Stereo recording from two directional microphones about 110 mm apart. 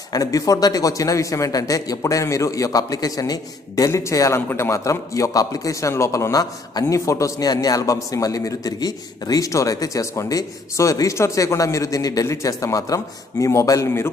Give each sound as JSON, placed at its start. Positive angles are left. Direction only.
{"t": 0.1, "sound": "a man's voice", "side_deg": 30}